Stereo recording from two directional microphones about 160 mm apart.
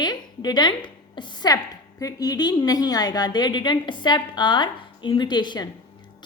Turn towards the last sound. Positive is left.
turn(degrees=30)  # may be behind; listen again after turning